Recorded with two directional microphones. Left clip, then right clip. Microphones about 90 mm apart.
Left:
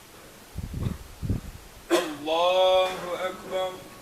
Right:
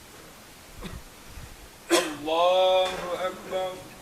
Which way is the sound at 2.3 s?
30° left (ahead or behind).